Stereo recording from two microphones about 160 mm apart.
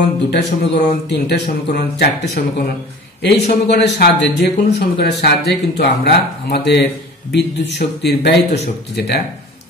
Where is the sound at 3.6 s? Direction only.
90° left.